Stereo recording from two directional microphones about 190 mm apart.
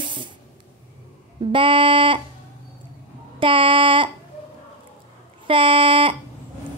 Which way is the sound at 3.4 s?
25° right (ahead or behind).